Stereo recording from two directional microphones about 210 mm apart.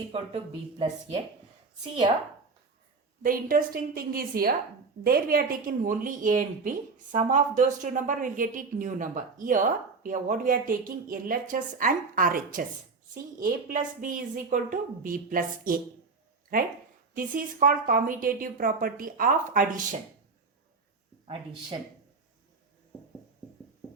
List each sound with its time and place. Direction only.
0.1 s speech: 25° right (ahead or behind)
3.2 s a woman's voice: 40° right (ahead or behind)